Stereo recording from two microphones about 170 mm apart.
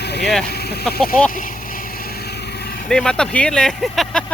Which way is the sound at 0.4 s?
70° left (ahead or behind).